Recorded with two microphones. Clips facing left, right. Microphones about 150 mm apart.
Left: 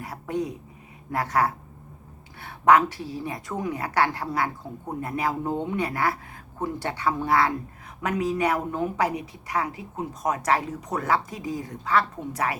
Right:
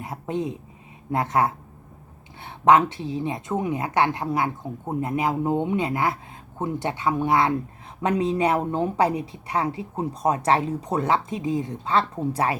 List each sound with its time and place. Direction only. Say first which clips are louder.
0.0 s a woman's voice: right 1 dB; 25° right (ahead or behind)